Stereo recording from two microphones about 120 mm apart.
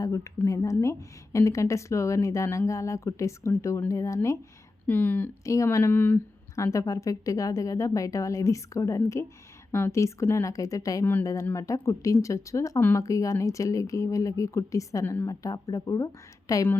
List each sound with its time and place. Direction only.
0.0 s speech: 25° left (ahead or behind)
4.9 s speech: 15° left (ahead or behind)
5.4 s speech: 25° left (ahead or behind)